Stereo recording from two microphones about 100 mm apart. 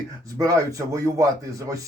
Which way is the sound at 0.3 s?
35° right (ahead or behind).